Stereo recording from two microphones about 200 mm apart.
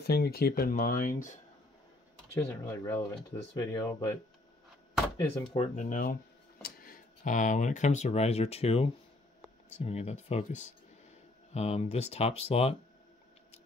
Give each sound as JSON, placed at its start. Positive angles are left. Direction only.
{"t": 0.0, "sound": "speech", "side_deg": 50}
{"t": 2.3, "sound": "speech", "side_deg": 15}
{"t": 5.6, "sound": "speech", "side_deg": 40}